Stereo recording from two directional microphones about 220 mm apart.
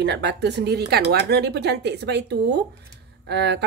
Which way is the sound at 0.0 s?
50° right (ahead or behind).